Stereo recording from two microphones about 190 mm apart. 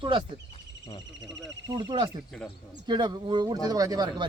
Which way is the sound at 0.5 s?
30° left (ahead or behind).